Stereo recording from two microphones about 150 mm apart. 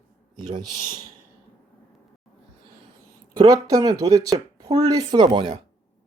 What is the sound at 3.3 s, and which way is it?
Speech, 25° right (ahead or behind).